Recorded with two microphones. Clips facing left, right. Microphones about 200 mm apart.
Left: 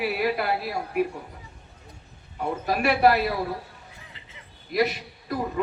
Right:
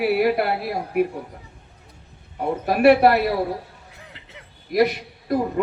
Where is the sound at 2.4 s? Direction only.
55° right (ahead or behind).